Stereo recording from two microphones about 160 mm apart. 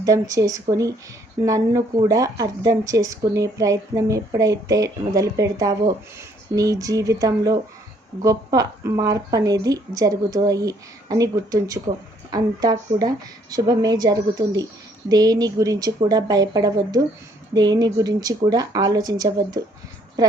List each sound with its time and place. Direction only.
0.0 s speech: 20° right (ahead or behind)